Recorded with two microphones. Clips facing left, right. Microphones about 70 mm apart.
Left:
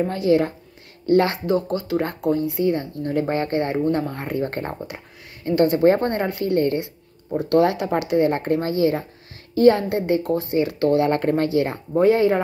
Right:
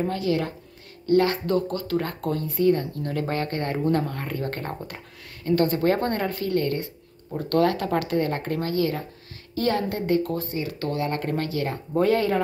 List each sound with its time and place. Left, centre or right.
0.1 s speech: left
2.2 s speech: centre
4.7 s speech: centre
11.9 s speech: centre